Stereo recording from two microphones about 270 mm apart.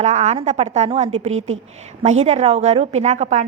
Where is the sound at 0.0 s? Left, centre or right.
Right.